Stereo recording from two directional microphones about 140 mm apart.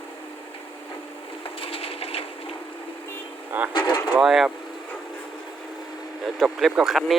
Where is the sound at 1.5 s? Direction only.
40° left (ahead or behind).